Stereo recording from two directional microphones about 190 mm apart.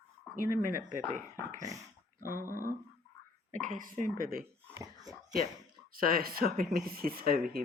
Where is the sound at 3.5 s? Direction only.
45° right (ahead or behind).